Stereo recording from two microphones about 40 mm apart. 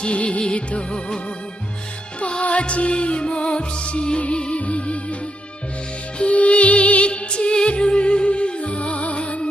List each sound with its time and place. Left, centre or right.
0.0 s music: left
6.1 s music: left